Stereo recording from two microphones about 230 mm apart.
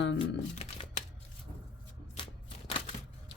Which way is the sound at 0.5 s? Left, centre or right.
Left.